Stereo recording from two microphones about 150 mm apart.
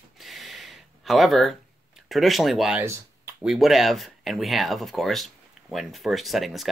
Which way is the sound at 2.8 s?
20° right (ahead or behind).